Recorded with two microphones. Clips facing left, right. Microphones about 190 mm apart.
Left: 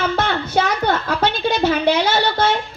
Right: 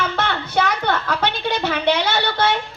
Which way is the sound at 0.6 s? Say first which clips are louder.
Left 1 dB; 35° left (ahead or behind).